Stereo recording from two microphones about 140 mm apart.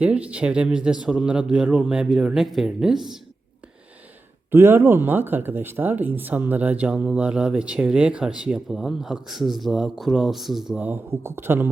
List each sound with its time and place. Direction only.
0.0 s speech: 10° right (ahead or behind)
4.5 s speech: 15° right (ahead or behind)